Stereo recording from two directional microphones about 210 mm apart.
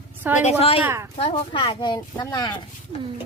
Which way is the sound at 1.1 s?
25° left (ahead or behind).